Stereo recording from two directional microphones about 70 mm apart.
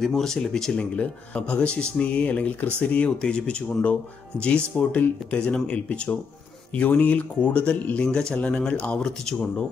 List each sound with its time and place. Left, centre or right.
0.0 s speech: centre